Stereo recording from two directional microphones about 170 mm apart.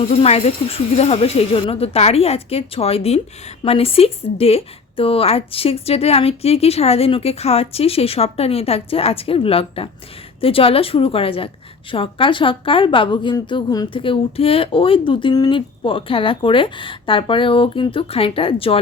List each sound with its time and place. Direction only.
0.1 s a woman's voice: 35° left (ahead or behind)